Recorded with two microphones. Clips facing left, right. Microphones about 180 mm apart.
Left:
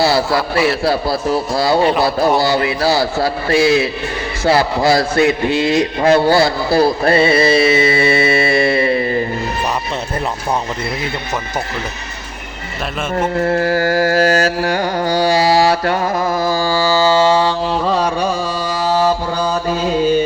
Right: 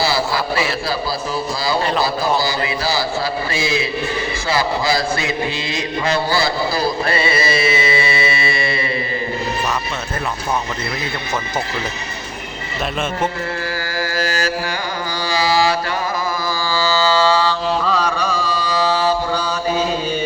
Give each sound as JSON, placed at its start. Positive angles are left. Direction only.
{"t": 0.0, "sound": "a man's voice", "side_deg": 65}
{"t": 0.9, "sound": "mantra", "side_deg": 65}
{"t": 13.4, "sound": "mantra", "side_deg": 50}
{"t": 17.0, "sound": "mantra", "side_deg": 25}
{"t": 18.7, "sound": "mantra", "side_deg": 50}